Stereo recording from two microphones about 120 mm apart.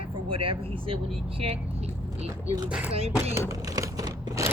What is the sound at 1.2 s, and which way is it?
Vehicle, 55° right (ahead or behind).